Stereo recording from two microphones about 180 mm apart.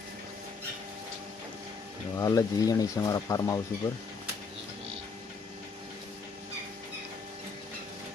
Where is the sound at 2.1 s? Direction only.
20° left (ahead or behind).